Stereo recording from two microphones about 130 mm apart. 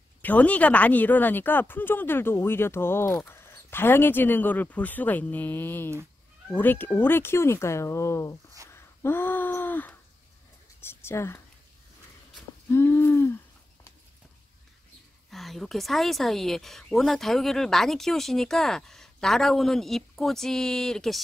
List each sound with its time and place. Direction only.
0.2 s speech: 10° left (ahead or behind)
8.6 s a sound: 20° left (ahead or behind)
10.8 s a woman's voice: 20° left (ahead or behind)
12.7 s hoot: 15° left (ahead or behind)
15.3 s speech: centre (ahead or behind)